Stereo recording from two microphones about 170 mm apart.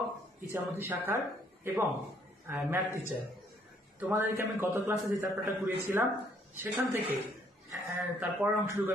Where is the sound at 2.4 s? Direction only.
15° right (ahead or behind).